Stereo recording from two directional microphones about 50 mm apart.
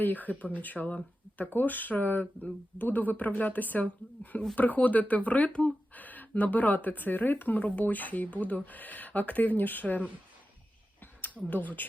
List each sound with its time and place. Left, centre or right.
0.0 s speech: left
11.4 s speech: left